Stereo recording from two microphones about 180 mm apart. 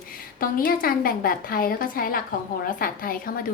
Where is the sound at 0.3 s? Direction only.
50° left (ahead or behind).